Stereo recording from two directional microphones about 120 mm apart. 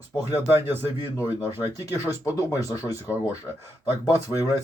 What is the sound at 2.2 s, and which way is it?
Speech, 25° left (ahead or behind).